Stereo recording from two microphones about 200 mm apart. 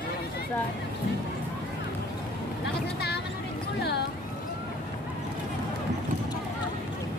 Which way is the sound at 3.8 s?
55° left (ahead or behind).